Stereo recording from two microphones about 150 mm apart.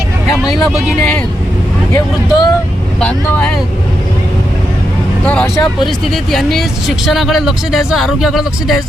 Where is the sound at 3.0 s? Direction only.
10° left (ahead or behind).